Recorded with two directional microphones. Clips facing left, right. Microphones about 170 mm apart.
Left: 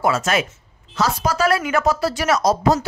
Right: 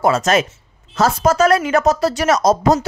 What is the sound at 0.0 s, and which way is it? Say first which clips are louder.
Speech: right 4 dB; 40° right (ahead or behind).